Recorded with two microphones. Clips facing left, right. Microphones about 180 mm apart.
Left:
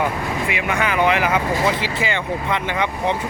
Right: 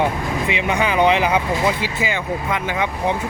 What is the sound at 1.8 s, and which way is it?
A man's voice, 10° right (ahead or behind).